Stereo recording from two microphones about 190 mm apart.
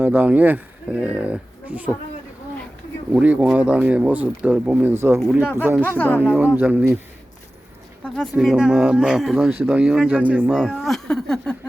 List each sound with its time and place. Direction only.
0.0 s speech: 10° right (ahead or behind)
3.1 s speech: 5° right (ahead or behind)
6.0 s speech: 10° left (ahead or behind)
6.2 s speech: 5° right (ahead or behind)
8.0 s speech: 5° left (ahead or behind)